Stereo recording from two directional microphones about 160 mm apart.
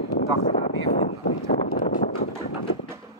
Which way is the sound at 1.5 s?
60° left (ahead or behind).